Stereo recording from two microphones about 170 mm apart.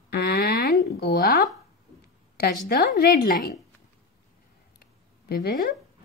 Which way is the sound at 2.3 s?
65° left (ahead or behind).